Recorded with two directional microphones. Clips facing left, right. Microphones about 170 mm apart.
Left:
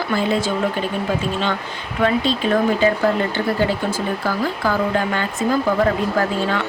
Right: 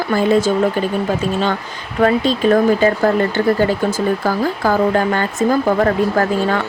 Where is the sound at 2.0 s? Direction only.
40° right (ahead or behind).